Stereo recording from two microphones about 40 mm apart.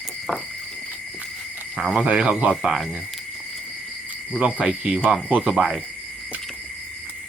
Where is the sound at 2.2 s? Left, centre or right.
Right.